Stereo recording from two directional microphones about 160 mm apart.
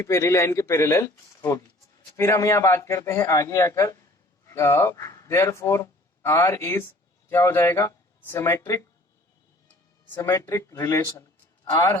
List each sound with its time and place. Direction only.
0.0 s a man's voice: 20° left (ahead or behind)
10.1 s a man's voice: 20° left (ahead or behind)